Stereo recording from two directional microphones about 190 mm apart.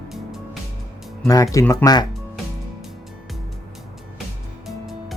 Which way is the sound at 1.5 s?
15° left (ahead or behind).